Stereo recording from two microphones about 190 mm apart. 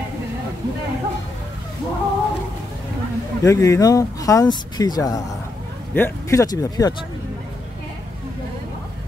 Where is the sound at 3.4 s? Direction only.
15° left (ahead or behind).